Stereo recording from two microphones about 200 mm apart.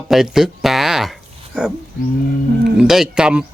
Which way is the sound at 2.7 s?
5° right (ahead or behind).